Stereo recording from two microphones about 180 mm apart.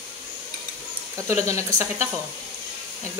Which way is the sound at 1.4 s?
15° right (ahead or behind).